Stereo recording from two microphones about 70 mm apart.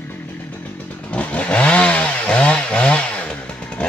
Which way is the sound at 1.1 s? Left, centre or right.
Centre.